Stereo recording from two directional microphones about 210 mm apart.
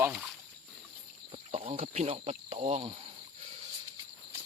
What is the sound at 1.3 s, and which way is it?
Speech, 25° right (ahead or behind).